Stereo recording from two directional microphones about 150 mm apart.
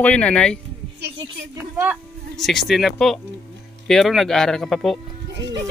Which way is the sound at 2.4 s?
Centre (ahead or behind).